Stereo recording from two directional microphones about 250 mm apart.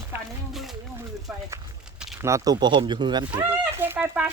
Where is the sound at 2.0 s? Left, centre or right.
Centre.